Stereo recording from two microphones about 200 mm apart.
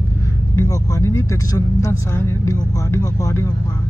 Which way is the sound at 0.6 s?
15° left (ahead or behind).